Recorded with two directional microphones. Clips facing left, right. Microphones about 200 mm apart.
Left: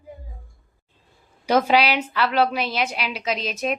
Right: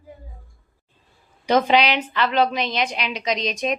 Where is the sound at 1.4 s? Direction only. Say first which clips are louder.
Right 1 dB; 10° left (ahead or behind).